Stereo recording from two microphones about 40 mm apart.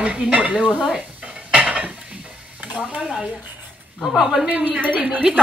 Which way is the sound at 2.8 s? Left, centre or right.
Right.